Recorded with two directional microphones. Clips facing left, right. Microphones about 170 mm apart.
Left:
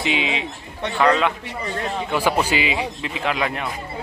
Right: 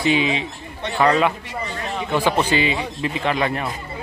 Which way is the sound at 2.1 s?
10° left (ahead or behind).